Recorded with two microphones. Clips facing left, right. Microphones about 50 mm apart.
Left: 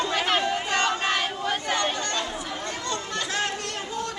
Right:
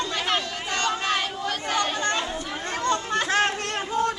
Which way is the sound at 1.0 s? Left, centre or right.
Centre.